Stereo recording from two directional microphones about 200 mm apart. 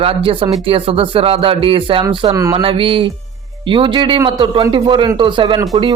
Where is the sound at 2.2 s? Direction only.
15° right (ahead or behind).